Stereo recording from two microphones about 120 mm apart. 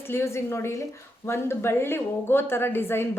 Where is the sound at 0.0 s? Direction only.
20° left (ahead or behind).